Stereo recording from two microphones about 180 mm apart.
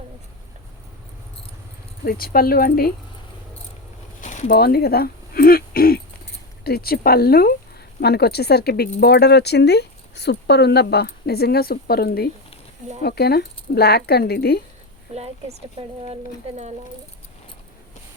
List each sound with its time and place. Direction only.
2.0 s speech: 55° left (ahead or behind)
4.2 s speech: 45° left (ahead or behind); by 14.6 s 60° left (ahead or behind)
15.1 s speech: 35° right (ahead or behind)